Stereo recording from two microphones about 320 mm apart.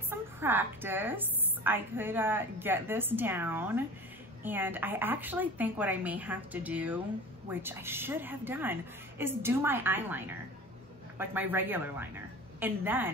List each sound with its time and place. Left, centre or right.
0.1 s a woman's voice: centre